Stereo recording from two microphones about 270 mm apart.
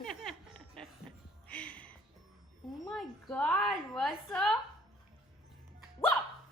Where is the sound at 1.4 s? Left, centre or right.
Centre.